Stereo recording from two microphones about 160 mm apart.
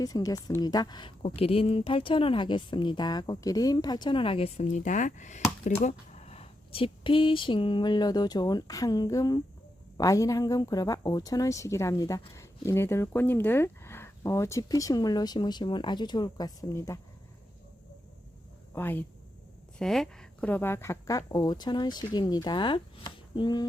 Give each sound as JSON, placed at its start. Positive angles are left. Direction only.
{"t": 0.0, "sound": "speech", "side_deg": 20}
{"t": 18.7, "sound": "speech", "side_deg": 10}